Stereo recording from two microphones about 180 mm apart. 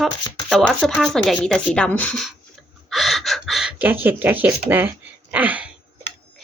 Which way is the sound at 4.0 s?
10° right (ahead or behind).